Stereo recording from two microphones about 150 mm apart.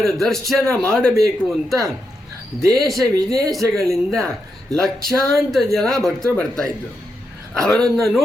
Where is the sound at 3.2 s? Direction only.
25° right (ahead or behind).